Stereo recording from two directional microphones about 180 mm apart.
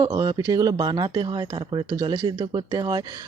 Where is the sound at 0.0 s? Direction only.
20° right (ahead or behind).